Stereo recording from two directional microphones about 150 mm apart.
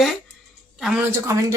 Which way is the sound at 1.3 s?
20° right (ahead or behind).